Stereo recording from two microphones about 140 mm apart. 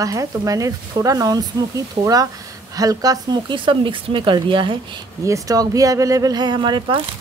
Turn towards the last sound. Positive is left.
turn(degrees=-35)  # may be behind; listen again after turning